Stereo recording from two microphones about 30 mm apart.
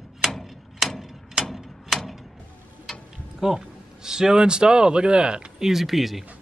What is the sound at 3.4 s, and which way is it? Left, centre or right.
Speech, centre.